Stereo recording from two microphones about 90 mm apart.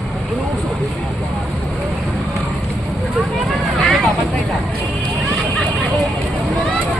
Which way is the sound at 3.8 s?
Centre (ahead or behind).